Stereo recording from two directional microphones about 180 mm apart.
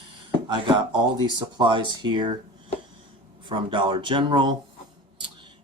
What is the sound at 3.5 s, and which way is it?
Speech, 25° right (ahead or behind).